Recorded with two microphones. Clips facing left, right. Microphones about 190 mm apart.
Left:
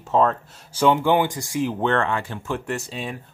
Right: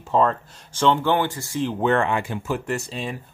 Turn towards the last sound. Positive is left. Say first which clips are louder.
# right 1 dB
turn(degrees=0)  # may be behind; listen again after turning